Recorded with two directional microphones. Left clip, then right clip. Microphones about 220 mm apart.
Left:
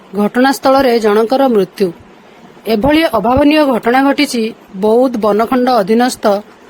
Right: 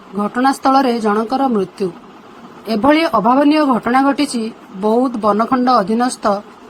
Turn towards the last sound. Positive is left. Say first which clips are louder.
# left 5 dB
turn(degrees=45)  # may be behind; listen again after turning